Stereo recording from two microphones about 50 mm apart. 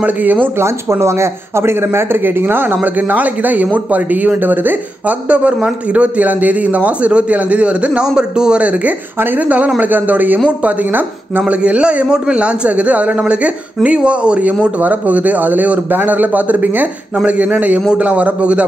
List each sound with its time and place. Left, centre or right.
0.0 s speech: right
0.6 s speech: right
5.3 s a man's voice: right
11.4 s a man's voice: right